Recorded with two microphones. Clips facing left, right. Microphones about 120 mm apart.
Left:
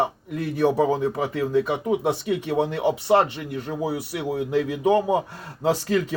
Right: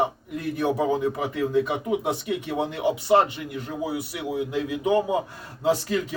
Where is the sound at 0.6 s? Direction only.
35° left (ahead or behind).